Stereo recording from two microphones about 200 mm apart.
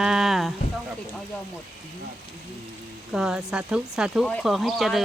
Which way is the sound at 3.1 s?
5° right (ahead or behind).